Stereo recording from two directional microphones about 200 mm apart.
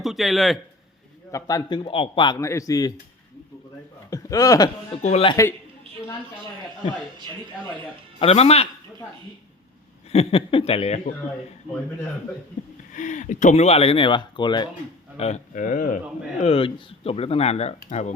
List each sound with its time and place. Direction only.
0.0 s speech: centre (ahead or behind)
1.3 s a man's voice: 15° left (ahead or behind)
4.1 s speech: 15° left (ahead or behind)
4.9 s speech: 30° left (ahead or behind)
8.2 s speech: 30° left (ahead or behind)
10.1 s speech: 30° left (ahead or behind)
12.9 s speech: 40° left (ahead or behind); by 14.7 s 20° left (ahead or behind)
15.2 s speech: 35° left (ahead or behind)
16.4 s speech: 30° left (ahead or behind)